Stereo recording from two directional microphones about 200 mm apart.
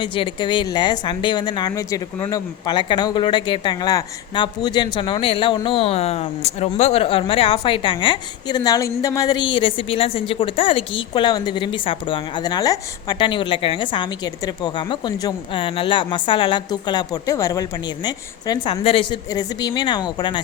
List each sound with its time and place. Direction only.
0.0 s speech: 25° left (ahead or behind)